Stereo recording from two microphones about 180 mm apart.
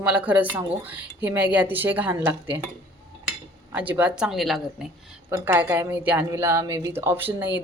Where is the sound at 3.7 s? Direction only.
10° right (ahead or behind).